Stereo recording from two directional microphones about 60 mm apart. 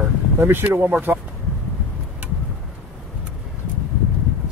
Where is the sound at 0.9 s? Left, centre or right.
Right.